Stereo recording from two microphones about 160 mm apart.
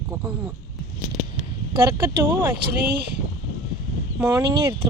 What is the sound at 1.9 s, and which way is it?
Speech, 15° right (ahead or behind).